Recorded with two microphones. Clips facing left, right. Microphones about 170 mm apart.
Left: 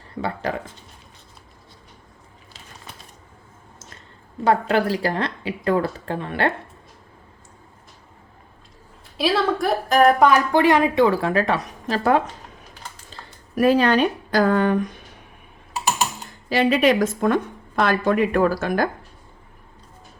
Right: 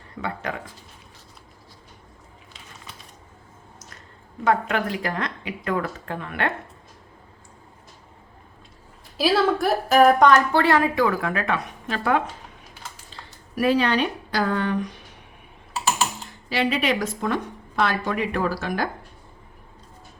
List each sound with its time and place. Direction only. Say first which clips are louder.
0.2 s speech: left 4 dB; 35° left (ahead or behind)
4.4 s speech: left 3 dB; 35° left (ahead or behind)
9.1 s a woman's voice: right 1 dB; centre (ahead or behind); by 12.3 s 35° left (ahead or behind)
13.6 s a woman's voice: left 4 dB; 45° left (ahead or behind)
16.5 s a woman's voice: left 6 dB; 45° left (ahead or behind)